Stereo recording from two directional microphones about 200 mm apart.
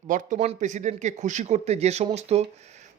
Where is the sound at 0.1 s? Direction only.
40° right (ahead or behind).